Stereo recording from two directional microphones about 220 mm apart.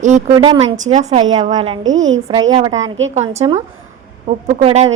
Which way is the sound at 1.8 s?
60° right (ahead or behind).